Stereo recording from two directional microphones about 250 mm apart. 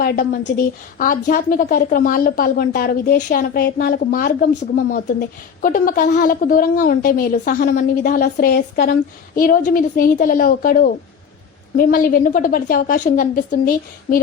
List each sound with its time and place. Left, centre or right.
0.0 s a woman's voice: left
5.6 s a woman's voice: left